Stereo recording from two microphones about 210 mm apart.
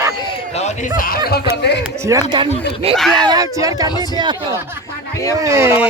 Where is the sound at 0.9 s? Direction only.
45° left (ahead or behind).